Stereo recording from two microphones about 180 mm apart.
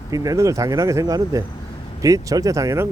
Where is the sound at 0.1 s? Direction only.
20° right (ahead or behind).